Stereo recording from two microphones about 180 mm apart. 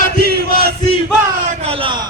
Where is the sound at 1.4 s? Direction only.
35° right (ahead or behind).